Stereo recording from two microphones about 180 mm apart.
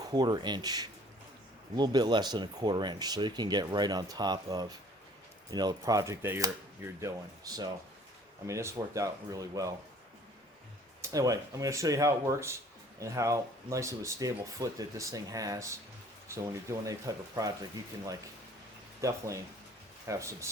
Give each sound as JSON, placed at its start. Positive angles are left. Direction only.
{"t": 0.0, "sound": "speech", "side_deg": -20}
{"t": 11.0, "sound": "speech", "side_deg": -20}
{"t": 19.0, "sound": "speech", "side_deg": -15}